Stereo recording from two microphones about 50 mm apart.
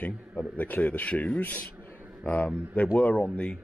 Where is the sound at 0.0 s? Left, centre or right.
Left.